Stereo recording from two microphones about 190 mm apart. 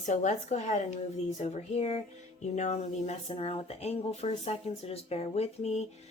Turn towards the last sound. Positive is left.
turn(degrees=35)  # may be behind; listen again after turning